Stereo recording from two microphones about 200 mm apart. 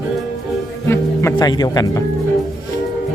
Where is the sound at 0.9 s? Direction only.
15° left (ahead or behind).